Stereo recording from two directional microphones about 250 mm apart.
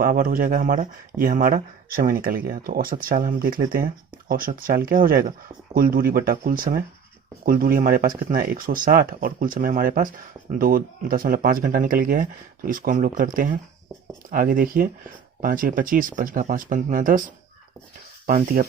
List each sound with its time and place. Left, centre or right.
0.0 s speech: right
18.3 s speech: right